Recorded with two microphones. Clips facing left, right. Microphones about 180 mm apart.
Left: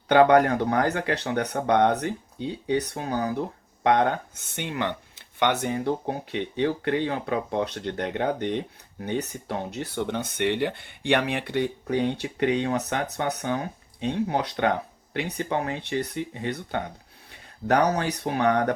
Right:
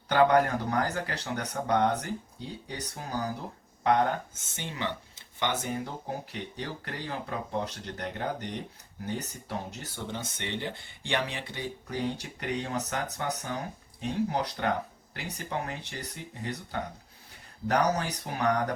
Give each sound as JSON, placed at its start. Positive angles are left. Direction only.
{"t": 0.1, "sound": "speech", "side_deg": 65}